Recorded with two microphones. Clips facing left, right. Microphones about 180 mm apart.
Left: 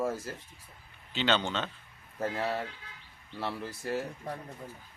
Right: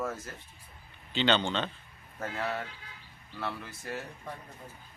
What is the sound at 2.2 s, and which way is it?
Speech, 30° left (ahead or behind).